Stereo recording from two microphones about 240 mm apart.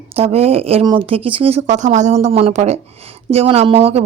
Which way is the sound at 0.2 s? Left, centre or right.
Right.